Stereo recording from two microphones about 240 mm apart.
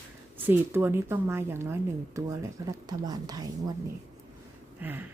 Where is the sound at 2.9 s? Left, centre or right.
Centre.